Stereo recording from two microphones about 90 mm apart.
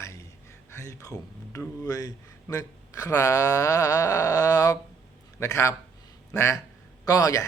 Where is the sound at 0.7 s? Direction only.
35° left (ahead or behind).